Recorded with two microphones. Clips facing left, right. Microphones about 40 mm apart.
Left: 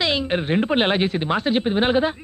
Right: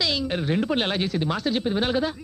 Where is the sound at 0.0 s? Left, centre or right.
Left.